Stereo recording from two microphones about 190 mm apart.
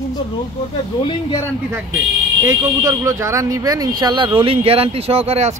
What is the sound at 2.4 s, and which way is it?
Speech, 15° right (ahead or behind).